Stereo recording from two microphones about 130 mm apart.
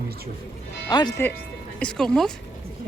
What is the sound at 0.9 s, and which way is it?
Speech, 30° left (ahead or behind).